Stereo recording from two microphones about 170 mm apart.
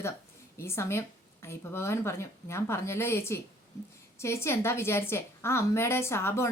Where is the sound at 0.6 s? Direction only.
15° left (ahead or behind).